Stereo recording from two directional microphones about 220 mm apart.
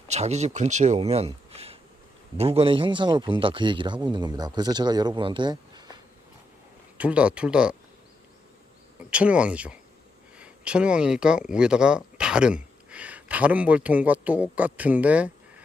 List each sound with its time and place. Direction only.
0.1 s a man's voice: 30° right (ahead or behind)
6.9 s speech: 5° right (ahead or behind)
9.0 s speech: 5° right (ahead or behind)